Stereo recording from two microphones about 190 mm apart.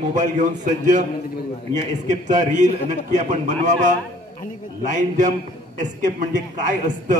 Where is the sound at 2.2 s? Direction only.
40° right (ahead or behind).